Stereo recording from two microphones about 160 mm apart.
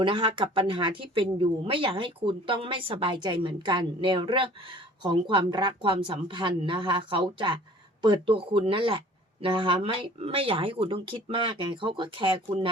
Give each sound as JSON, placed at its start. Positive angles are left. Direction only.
{"t": 0.0, "sound": "speech", "side_deg": -30}